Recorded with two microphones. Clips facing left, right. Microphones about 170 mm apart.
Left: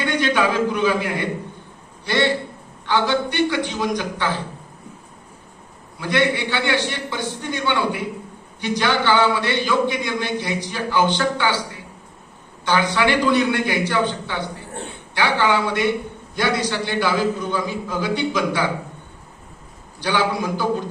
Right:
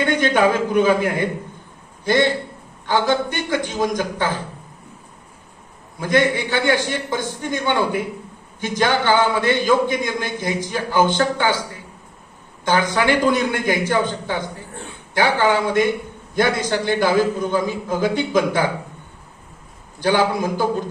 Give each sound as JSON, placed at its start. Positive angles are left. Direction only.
{"t": 0.0, "sound": "a man's voice", "side_deg": -50}
{"t": 6.0, "sound": "a man's voice", "side_deg": -45}
{"t": 12.6, "sound": "a man's voice", "side_deg": -45}
{"t": 20.0, "sound": "a man's voice", "side_deg": -50}